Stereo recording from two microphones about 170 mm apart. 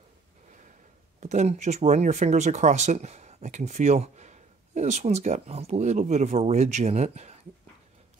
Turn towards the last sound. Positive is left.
turn(degrees=-40)  # may be behind; listen again after turning